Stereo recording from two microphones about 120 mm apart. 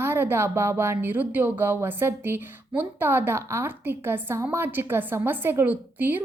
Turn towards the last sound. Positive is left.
turn(degrees=-15)  # may be behind; listen again after turning